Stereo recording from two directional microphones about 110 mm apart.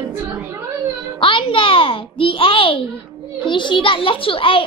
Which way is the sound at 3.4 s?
45° left (ahead or behind).